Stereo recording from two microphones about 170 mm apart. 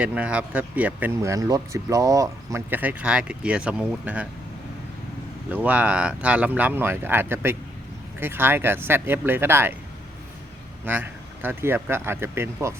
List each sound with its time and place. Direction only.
0.0 s speech: 5° right (ahead or behind)
5.5 s speech: 10° right (ahead or behind)
10.9 s speech: 10° right (ahead or behind)